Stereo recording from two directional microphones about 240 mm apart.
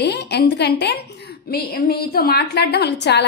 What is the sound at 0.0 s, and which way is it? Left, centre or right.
A woman's voice, left.